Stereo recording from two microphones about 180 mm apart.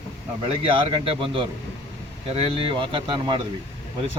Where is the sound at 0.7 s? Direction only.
30° right (ahead or behind).